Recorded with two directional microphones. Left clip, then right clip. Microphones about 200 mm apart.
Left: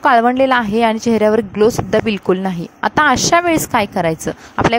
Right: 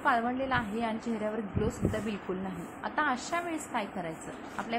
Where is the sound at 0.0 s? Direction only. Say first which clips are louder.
Left 17 dB; 55° left (ahead or behind).